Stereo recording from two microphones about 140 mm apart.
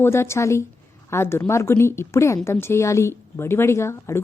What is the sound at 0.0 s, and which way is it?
A woman's voice, 20° left (ahead or behind).